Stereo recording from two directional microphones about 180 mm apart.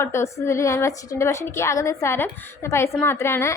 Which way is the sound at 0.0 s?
15° left (ahead or behind).